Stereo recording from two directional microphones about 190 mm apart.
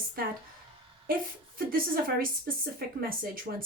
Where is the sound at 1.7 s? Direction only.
50° right (ahead or behind).